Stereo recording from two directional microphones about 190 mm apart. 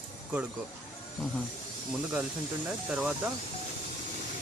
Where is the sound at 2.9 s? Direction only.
5° right (ahead or behind).